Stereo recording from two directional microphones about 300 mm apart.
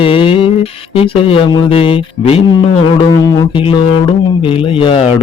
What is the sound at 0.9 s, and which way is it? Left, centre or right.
Speech, centre.